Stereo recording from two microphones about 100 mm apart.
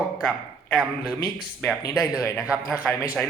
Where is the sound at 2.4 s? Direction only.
15° right (ahead or behind).